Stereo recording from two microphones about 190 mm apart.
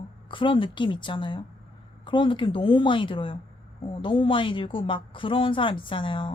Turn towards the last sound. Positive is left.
turn(degrees=25)  # may be behind; listen again after turning